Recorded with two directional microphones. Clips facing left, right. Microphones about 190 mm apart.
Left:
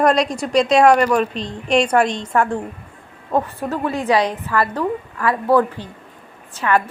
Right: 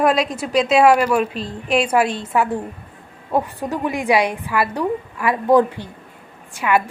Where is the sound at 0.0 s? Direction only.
5° right (ahead or behind).